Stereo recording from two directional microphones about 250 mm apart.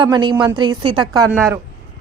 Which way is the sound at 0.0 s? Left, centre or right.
Centre.